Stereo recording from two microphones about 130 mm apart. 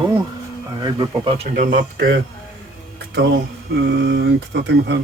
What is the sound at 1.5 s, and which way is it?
Speech, 90° right.